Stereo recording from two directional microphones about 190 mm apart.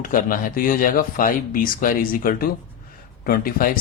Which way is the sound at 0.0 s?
45° left (ahead or behind).